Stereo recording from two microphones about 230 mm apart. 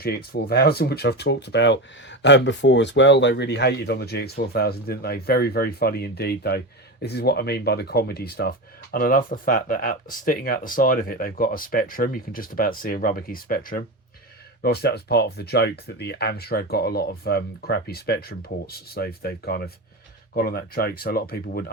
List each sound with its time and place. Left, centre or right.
0.0 s speech: left